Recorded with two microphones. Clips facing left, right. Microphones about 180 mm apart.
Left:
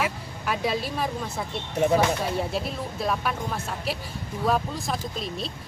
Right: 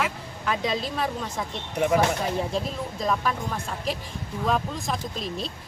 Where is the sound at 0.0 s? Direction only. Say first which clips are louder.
Even; 10° left (ahead or behind).